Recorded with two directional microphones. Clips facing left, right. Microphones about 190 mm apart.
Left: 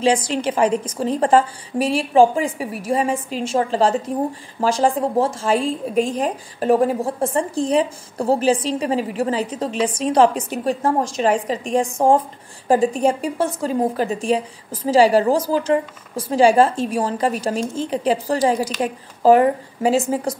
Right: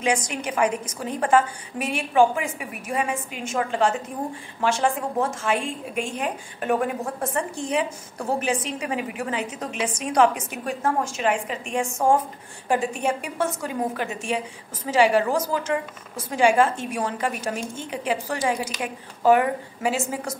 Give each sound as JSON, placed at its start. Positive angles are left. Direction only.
{"t": 0.0, "sound": "a woman's voice", "side_deg": 30}